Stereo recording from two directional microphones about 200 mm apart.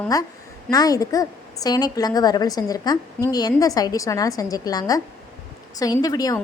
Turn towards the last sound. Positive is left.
turn(degrees=20)  # may be behind; listen again after turning